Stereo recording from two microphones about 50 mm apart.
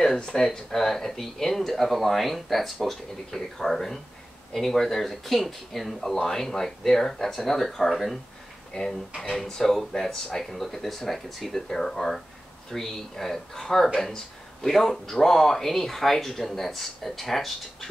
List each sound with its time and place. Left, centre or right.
0.0 s speech: centre
8.7 s speech: centre